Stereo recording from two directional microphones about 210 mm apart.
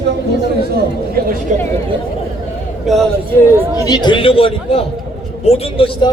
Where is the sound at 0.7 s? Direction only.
45° right (ahead or behind).